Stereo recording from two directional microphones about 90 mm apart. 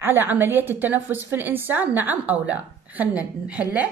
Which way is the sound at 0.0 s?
25° right (ahead or behind).